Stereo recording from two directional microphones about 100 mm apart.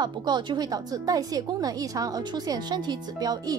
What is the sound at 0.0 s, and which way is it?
Speech, 45° right (ahead or behind).